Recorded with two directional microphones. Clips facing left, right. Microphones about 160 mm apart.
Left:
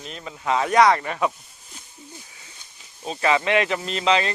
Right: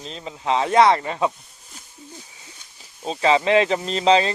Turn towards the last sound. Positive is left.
turn(degrees=-30)  # may be behind; listen again after turning